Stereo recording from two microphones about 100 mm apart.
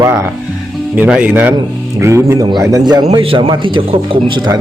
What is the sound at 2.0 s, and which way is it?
Speech, 30° right (ahead or behind).